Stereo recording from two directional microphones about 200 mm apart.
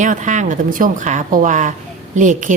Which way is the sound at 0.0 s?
40° right (ahead or behind).